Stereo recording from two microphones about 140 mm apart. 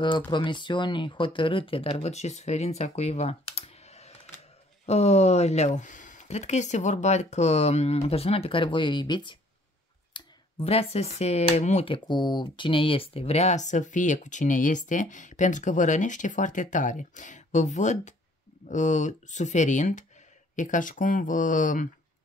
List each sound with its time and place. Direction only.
0.3 s speech: 35° left (ahead or behind)
10.1 s clicking: 35° left (ahead or behind)
10.6 s speech: 45° left (ahead or behind)
11.9 s speech: 35° left (ahead or behind); by 21.8 s 70° left (ahead or behind)